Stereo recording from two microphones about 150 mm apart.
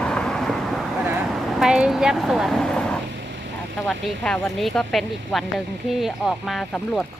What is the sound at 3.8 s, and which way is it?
Speech, centre (ahead or behind).